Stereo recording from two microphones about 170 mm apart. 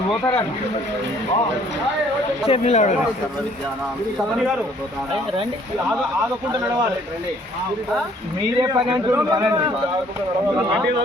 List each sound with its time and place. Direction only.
2.5 s speech: 40° left (ahead or behind)
8.5 s a man's voice: 25° right (ahead or behind)